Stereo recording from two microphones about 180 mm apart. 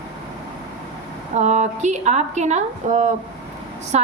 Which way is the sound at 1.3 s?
40° right (ahead or behind).